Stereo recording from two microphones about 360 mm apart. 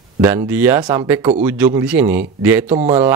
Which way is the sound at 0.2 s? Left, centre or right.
Centre.